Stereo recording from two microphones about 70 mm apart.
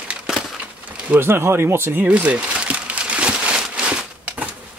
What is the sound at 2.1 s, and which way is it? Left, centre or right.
Crumpling, centre.